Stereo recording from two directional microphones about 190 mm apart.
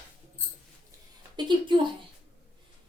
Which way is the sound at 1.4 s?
25° right (ahead or behind).